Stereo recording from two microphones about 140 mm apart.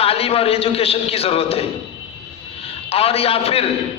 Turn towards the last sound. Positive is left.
turn(degrees=45)  # may be behind; listen again after turning